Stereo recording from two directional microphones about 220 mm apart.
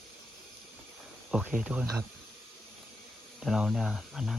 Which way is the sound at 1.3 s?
5° right (ahead or behind).